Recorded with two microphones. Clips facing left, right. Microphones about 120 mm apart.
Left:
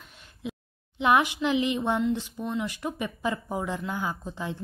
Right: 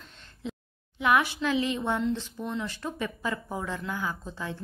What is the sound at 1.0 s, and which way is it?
Speech, 20° left (ahead or behind).